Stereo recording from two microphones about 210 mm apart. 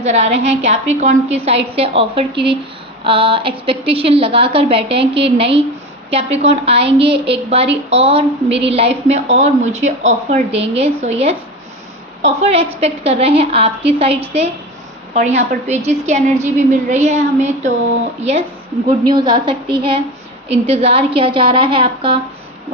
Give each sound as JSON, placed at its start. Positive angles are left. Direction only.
{"t": 0.0, "sound": "a woman's voice", "side_deg": -30}
{"t": 18.9, "sound": "a woman's voice", "side_deg": -20}